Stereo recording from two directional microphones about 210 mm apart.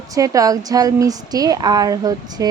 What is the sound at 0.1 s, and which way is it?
A woman's voice, 15° right (ahead or behind).